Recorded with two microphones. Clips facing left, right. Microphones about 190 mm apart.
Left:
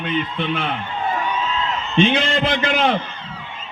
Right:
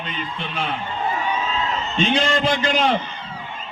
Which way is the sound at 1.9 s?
55° left (ahead or behind).